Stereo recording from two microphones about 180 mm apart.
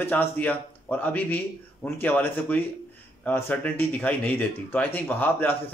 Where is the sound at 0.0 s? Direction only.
10° left (ahead or behind).